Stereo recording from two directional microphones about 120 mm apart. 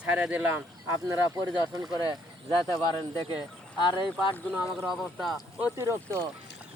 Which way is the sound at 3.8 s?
40° left (ahead or behind).